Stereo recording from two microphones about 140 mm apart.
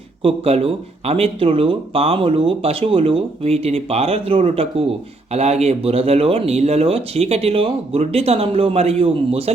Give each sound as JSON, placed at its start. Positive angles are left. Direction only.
{"t": 0.2, "sound": "speech", "side_deg": -45}